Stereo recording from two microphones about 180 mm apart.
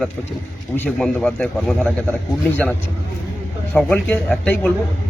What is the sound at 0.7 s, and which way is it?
Speech, 10° left (ahead or behind).